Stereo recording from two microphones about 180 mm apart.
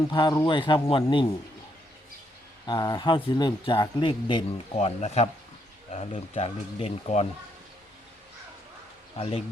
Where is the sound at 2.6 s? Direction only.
25° left (ahead or behind).